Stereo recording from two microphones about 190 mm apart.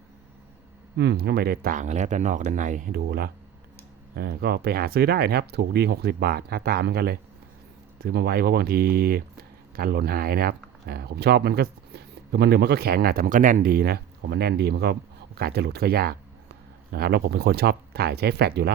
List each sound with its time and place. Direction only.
0.9 s speech: 60° right (ahead or behind)